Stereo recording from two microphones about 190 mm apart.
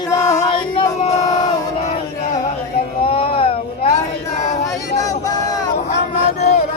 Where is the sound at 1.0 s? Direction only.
35° left (ahead or behind).